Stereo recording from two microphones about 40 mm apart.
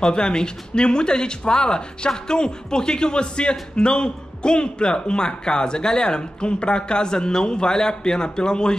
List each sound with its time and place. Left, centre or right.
0.0 s speech: centre